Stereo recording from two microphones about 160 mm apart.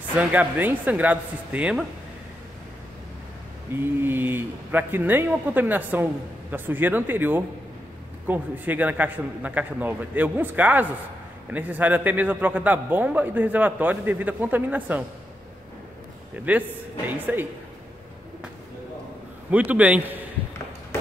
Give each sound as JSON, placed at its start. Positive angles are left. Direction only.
{"t": 0.2, "sound": "a man's voice", "side_deg": -10}
{"t": 3.8, "sound": "a man's voice", "side_deg": -15}
{"t": 16.4, "sound": "a man's voice", "side_deg": -10}
{"t": 19.5, "sound": "a man's voice", "side_deg": -10}
{"t": 20.9, "sound": "a sound", "side_deg": 15}